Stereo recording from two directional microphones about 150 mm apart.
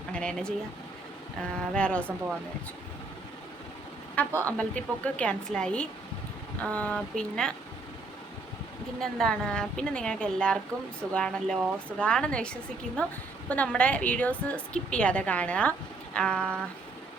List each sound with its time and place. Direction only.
0.1 s a woman's voice: 5° left (ahead or behind)
4.3 s speech: 20° right (ahead or behind)
5.0 s a woman's voice: 10° left (ahead or behind)
9.0 s a woman's voice: 5° left (ahead or behind)